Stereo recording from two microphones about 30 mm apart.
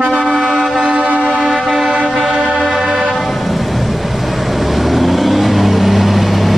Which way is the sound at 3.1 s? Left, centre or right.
Centre.